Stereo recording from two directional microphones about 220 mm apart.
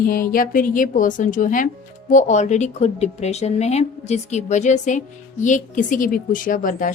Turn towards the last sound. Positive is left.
turn(degrees=35)  # may be behind; listen again after turning